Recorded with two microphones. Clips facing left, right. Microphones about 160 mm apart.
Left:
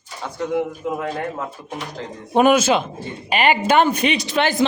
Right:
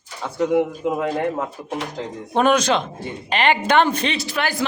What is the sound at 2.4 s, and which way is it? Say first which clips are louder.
Speech: left 3 dB; 10° left (ahead or behind).